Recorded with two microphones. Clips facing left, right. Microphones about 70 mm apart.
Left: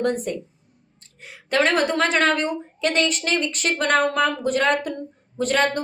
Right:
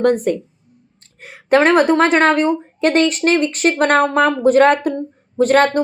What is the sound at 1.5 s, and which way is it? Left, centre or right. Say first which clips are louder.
Speech: right 8 dB; right.